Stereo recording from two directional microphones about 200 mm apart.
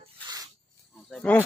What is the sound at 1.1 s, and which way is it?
Speech, 10° left (ahead or behind).